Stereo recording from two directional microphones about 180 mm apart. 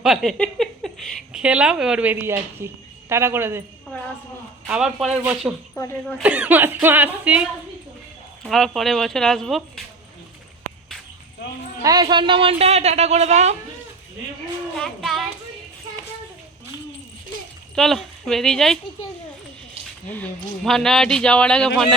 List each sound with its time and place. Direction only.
0.0 s speech: centre (ahead or behind)
4.7 s speech: 5° right (ahead or behind)
5.7 s speech: 10° left (ahead or behind)
6.1 s speech: 5° right (ahead or behind)
8.4 s speech: centre (ahead or behind)
11.8 s speech: 20° right (ahead or behind); by 13.6 s 40° right (ahead or behind)
14.8 s child singing: centre (ahead or behind)
17.7 s speech: centre (ahead or behind)
20.1 s speech: 10° left (ahead or behind)